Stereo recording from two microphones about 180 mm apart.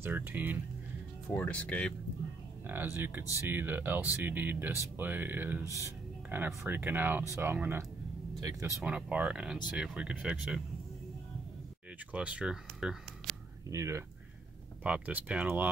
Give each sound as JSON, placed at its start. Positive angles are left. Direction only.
{"t": 0.0, "sound": "speech", "side_deg": -10}
{"t": 1.3, "sound": "speech", "side_deg": 10}
{"t": 2.6, "sound": "speech", "side_deg": -10}
{"t": 12.1, "sound": "speech", "side_deg": -5}
{"t": 13.7, "sound": "speech", "side_deg": -15}